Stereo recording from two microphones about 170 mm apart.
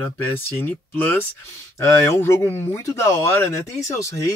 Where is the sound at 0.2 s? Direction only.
10° left (ahead or behind).